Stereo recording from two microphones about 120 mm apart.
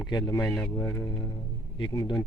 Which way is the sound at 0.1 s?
30° left (ahead or behind).